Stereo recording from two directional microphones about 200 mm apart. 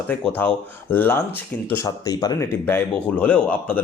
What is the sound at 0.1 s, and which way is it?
Speech, 10° left (ahead or behind).